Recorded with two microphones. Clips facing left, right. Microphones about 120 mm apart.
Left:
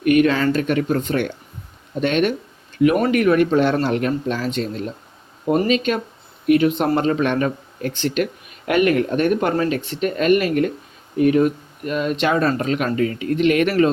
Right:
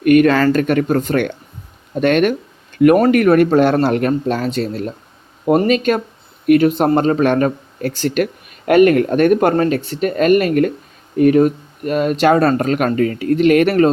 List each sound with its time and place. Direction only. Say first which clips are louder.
0.0 s speech: right 5 dB; 55° right (ahead or behind)
4.4 s speech: right 4 dB; 40° right (ahead or behind)